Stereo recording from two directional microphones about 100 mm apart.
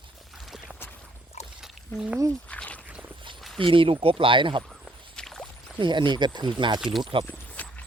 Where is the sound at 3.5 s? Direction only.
60° right (ahead or behind).